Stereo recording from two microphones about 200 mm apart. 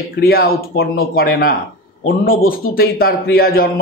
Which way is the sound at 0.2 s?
50° left (ahead or behind).